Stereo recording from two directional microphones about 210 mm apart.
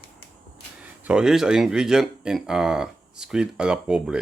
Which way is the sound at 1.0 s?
5° right (ahead or behind).